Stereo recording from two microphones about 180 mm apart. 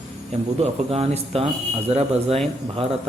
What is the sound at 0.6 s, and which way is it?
Speech, 35° right (ahead or behind).